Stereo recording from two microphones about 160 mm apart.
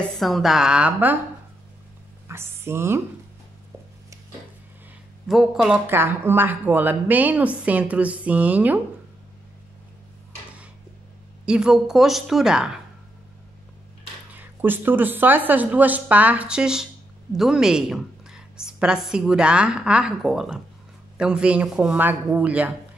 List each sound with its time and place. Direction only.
0.2 s a woman's voice: centre (ahead or behind)
2.2 s speech: 15° right (ahead or behind)
5.3 s a woman's voice: centre (ahead or behind)
5.9 s speech: 15° right (ahead or behind)
11.4 s a woman's voice: 5° right (ahead or behind)
14.3 s a woman's voice: 10° right (ahead or behind)